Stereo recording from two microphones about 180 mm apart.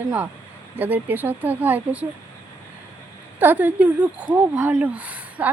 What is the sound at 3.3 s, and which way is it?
A woman's voice, 10° right (ahead or behind).